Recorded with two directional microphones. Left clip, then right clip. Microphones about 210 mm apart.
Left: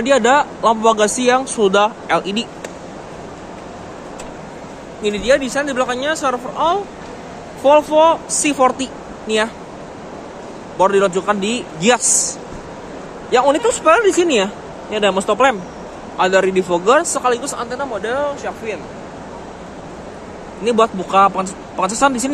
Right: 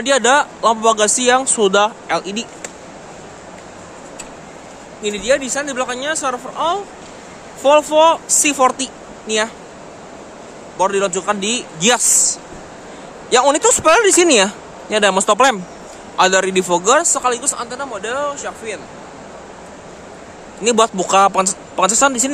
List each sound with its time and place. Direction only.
0.0 s speech: 15° right (ahead or behind)
5.0 s speech: 10° right (ahead or behind)
10.8 s speech: 5° right (ahead or behind)
13.3 s speech: 30° right (ahead or behind); by 18.8 s 10° right (ahead or behind)
20.6 s speech: 30° right (ahead or behind)